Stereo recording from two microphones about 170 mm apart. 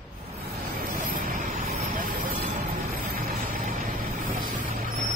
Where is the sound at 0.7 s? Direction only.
55° right (ahead or behind).